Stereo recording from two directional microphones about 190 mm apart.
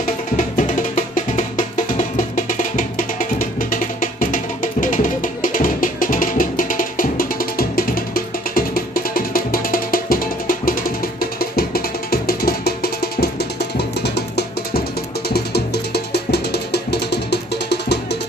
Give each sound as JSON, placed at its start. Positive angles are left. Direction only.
{"t": 0.3, "sound": "music", "side_deg": 40}